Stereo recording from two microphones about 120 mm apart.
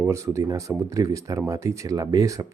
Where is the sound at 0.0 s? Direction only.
25° right (ahead or behind).